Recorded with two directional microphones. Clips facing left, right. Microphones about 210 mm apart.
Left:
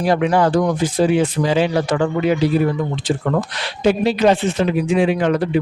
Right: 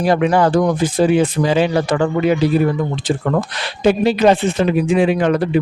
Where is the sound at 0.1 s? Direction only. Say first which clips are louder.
Right 1 dB; 50° right (ahead or behind).